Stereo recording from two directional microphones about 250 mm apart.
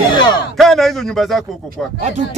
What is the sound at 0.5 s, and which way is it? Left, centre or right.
A man's voice, centre.